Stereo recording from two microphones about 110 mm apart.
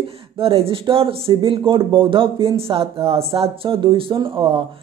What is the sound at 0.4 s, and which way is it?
Speech, 55° right (ahead or behind).